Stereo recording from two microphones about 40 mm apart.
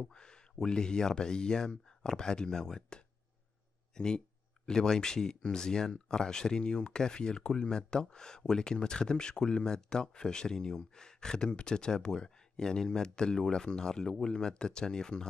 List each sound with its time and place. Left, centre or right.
0.0 s speech: left